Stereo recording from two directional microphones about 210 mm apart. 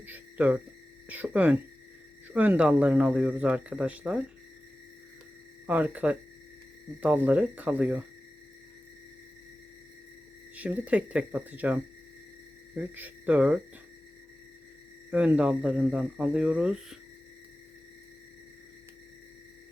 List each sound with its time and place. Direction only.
0.0 s a sound: 10° right (ahead or behind)
1.0 s speech: 5° right (ahead or behind)
5.6 s speech: 10° right (ahead or behind)
10.5 s speech: 5° right (ahead or behind)
15.1 s speech: 5° right (ahead or behind)